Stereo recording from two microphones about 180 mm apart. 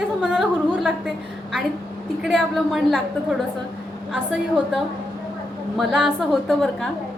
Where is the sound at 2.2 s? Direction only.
Centre (ahead or behind).